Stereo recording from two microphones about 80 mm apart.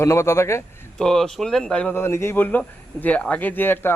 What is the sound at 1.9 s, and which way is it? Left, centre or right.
Speech, left.